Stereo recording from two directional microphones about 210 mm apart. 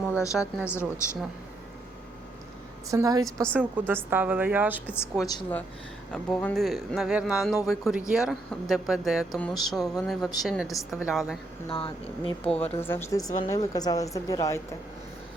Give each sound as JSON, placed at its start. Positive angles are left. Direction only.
{"t": 0.1, "sound": "a sound", "side_deg": 15}
{"t": 0.7, "sound": "a woman's voice", "side_deg": 10}
{"t": 2.9, "sound": "a woman's voice", "side_deg": -15}
{"t": 5.2, "sound": "speech", "side_deg": 20}
{"t": 6.1, "sound": "speech", "side_deg": 5}
{"t": 11.7, "sound": "speech", "side_deg": 25}
{"t": 12.5, "sound": "a woman's voice", "side_deg": 10}